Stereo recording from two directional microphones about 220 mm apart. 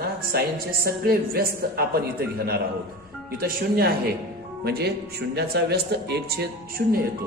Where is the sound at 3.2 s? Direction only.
40° right (ahead or behind).